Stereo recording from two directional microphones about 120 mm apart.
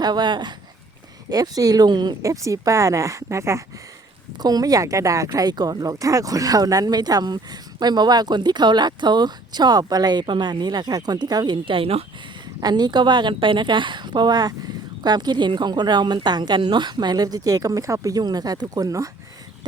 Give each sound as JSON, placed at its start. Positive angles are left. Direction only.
{"t": 0.0, "sound": "speech", "side_deg": -35}
{"t": 12.5, "sound": "speech", "side_deg": -35}